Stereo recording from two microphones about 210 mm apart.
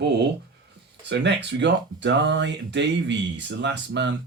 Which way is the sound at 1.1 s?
55° right (ahead or behind).